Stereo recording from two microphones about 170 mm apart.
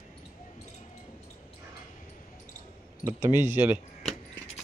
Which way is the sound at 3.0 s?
15° right (ahead or behind).